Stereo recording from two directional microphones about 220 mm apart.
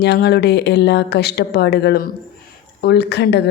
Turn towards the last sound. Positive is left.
turn(degrees=50)  # may be behind; listen again after turning